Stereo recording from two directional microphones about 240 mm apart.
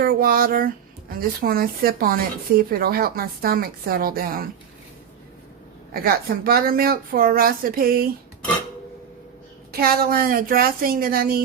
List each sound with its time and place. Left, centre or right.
0.0 s speech: right
5.9 s speech: right
9.8 s speech: right